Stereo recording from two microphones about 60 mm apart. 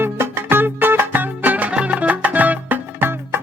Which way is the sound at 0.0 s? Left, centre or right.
Right.